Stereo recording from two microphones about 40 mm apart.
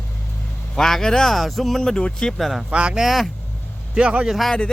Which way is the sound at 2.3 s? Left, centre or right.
Centre.